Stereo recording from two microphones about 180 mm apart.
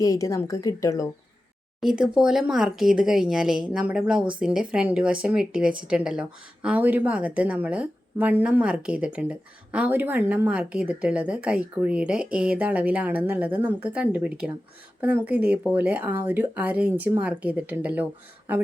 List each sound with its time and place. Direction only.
0.0 s a woman's voice: 20° left (ahead or behind)
1.8 s speech: 5° right (ahead or behind)